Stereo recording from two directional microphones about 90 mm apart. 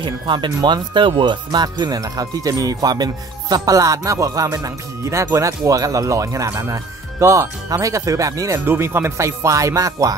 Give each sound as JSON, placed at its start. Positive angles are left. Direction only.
{"t": 0.0, "sound": "speech", "side_deg": -65}
{"t": 8.6, "sound": "speech", "side_deg": -25}